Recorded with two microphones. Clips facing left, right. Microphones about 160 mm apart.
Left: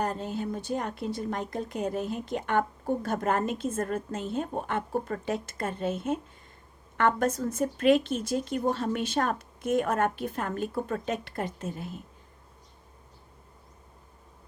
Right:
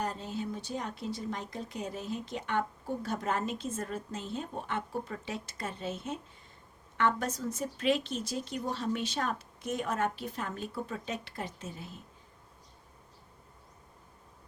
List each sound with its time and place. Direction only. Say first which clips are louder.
0.0 s a woman's voice: left 5 dB; 50° left (ahead or behind)